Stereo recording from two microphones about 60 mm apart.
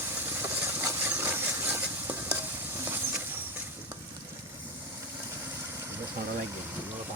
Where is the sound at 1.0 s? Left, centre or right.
Right.